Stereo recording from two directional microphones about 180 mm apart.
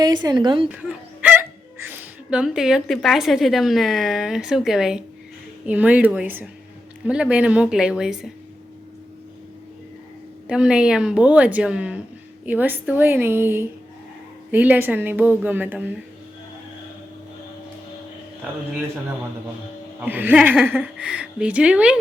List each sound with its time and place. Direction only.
0.0 s a woman's voice: 25° right (ahead or behind)
0.7 s a woman's voice: 5° right (ahead or behind)
10.4 s a woman's voice: 5° right (ahead or behind)
20.0 s a woman's voice: 10° right (ahead or behind)